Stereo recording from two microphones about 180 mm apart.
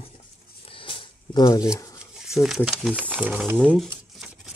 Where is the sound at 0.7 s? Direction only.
30° left (ahead or behind).